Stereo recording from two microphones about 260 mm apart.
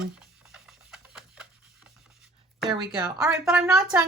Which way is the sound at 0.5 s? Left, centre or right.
Centre.